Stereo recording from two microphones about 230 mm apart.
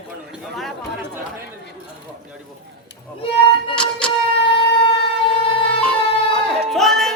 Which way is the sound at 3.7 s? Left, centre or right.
Centre.